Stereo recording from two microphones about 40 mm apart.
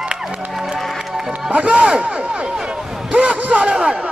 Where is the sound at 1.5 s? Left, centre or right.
Right.